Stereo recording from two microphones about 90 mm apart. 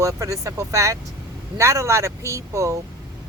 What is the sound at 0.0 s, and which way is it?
Speech, 35° right (ahead or behind).